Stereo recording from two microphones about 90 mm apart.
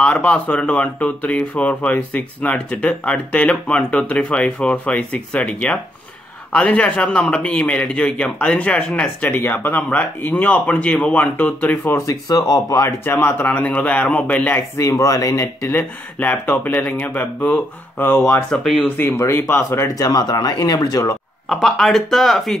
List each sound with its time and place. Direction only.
0.0 s speech: 15° left (ahead or behind)
12.1 s speech: 45° left (ahead or behind)
13.0 s speech: 25° left (ahead or behind)
14.8 s speech: 40° left (ahead or behind)
16.2 s speech: 20° left (ahead or behind)
18.5 s speech: 5° left (ahead or behind)
18.8 s speech: 25° left (ahead or behind)
20.0 s speech: 45° left (ahead or behind)
21.5 s speech: 5° left (ahead or behind)